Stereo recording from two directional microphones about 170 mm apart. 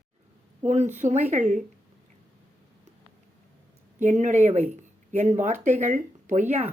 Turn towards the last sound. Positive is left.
turn(degrees=-45)  # may be behind; listen again after turning